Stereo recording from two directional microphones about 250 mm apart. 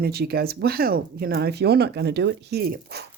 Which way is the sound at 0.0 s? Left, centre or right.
Right.